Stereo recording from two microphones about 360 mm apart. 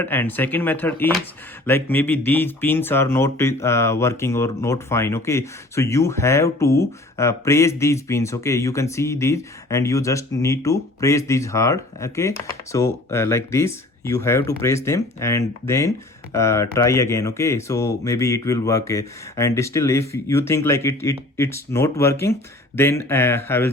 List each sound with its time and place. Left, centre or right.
0.0 s speech: centre